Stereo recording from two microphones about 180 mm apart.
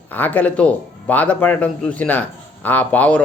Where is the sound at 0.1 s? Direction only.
10° left (ahead or behind).